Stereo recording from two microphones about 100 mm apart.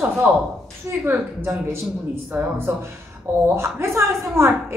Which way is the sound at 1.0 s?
20° right (ahead or behind).